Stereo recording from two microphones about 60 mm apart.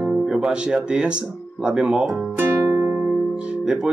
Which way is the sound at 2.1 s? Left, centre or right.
Right.